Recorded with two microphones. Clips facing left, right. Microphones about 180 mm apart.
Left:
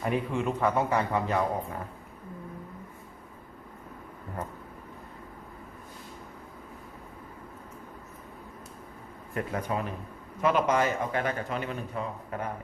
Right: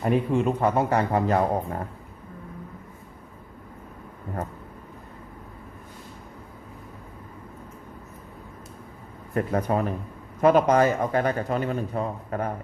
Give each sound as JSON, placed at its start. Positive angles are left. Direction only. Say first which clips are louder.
{"t": 0.0, "sound": "a man's voice", "louder": "right 6 dB", "side_deg": -35}
{"t": 9.3, "sound": "a man's voice", "louder": "right 7 dB", "side_deg": -40}